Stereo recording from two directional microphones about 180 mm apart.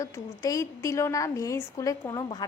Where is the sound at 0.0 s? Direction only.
20° left (ahead or behind).